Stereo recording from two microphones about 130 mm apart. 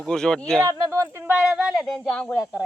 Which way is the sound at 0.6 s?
20° right (ahead or behind).